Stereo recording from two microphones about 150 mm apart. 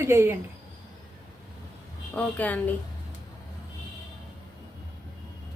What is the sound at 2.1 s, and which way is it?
Speech, 10° left (ahead or behind).